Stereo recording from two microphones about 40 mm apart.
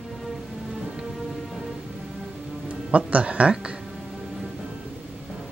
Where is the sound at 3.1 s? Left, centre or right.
Right.